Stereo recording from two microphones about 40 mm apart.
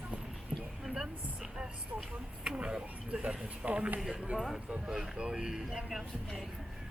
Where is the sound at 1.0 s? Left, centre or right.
Centre; by 3.9 s right.